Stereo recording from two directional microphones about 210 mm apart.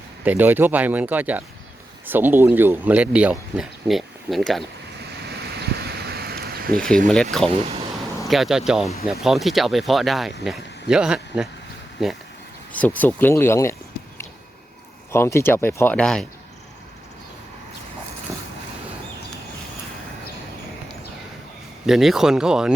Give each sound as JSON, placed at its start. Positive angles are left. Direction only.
{"t": 0.3, "sound": "speech", "side_deg": -10}
{"t": 5.2, "sound": "a sound", "side_deg": -50}
{"t": 7.1, "sound": "speech", "side_deg": 5}
{"t": 15.1, "sound": "speech", "side_deg": 10}
{"t": 21.8, "sound": "speech", "side_deg": 0}